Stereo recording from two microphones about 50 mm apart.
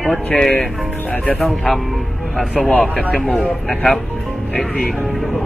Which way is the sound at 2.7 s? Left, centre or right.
Left.